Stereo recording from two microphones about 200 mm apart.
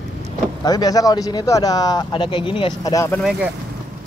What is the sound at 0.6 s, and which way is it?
Speech, 20° left (ahead or behind).